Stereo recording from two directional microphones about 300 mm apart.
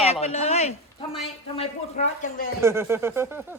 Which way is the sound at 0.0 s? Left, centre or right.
Centre.